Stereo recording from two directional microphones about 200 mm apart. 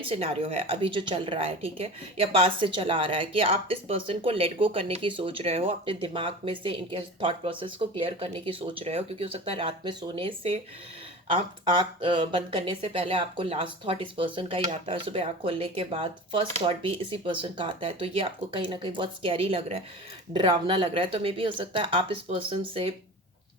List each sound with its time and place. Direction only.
0.0 s a woman's voice: 30° right (ahead or behind)